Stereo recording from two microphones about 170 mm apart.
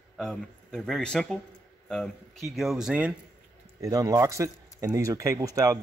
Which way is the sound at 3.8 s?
20° right (ahead or behind).